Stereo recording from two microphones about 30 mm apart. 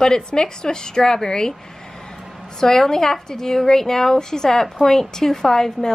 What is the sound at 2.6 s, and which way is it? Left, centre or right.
A woman's voice, centre.